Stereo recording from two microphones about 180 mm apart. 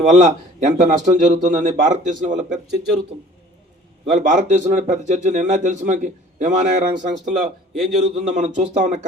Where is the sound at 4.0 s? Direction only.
45° right (ahead or behind).